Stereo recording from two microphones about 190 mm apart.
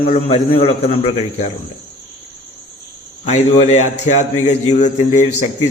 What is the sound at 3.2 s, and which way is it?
A man's voice, 35° left (ahead or behind).